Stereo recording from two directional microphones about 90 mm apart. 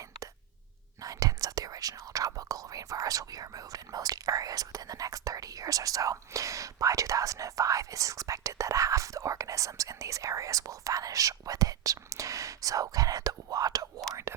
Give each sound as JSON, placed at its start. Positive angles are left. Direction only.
{"t": 1.0, "sound": "speech", "side_deg": -40}